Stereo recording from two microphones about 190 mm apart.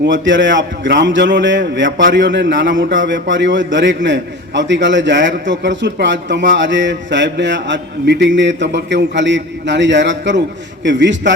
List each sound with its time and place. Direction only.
0.0 s a man's voice: 75° right (ahead or behind)